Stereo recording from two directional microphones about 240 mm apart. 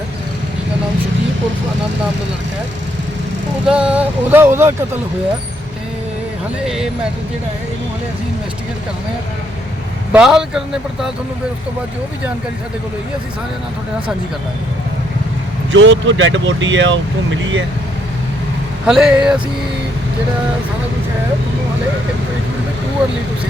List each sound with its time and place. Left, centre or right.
3.7 s speech: centre
10.1 s speech: centre
15.7 s speech: right
18.9 s speech: centre